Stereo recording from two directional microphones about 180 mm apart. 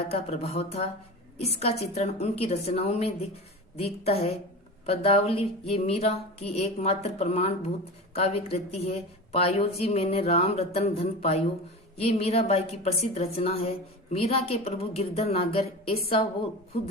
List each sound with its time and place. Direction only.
0.1 s a woman's voice: 35° left (ahead or behind)